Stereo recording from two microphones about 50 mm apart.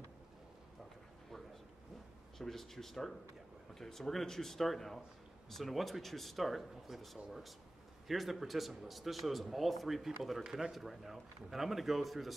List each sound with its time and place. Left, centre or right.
2.3 s a man's voice: centre
10.4 s a man's voice: centre